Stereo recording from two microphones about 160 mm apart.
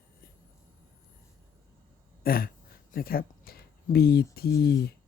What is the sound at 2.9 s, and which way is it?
Speech, 65° left (ahead or behind).